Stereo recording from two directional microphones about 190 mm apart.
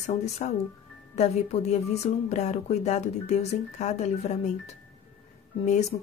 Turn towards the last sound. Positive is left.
turn(degrees=35)  # may be behind; listen again after turning